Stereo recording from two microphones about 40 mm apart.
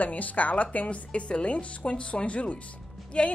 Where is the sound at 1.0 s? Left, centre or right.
Left.